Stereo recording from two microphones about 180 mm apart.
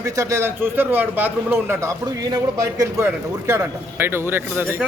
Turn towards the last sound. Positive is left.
turn(degrees=-10)  # may be behind; listen again after turning